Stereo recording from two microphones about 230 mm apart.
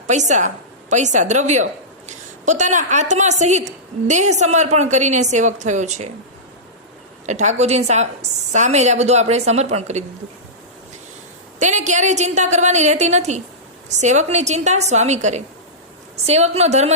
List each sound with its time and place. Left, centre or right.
0.1 s a woman's voice: right
7.3 s a woman's voice: right
11.6 s a woman's voice: right